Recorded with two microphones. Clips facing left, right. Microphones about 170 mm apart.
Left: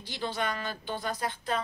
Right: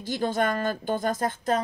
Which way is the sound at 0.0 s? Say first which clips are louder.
Right 8 dB; 45° right (ahead or behind).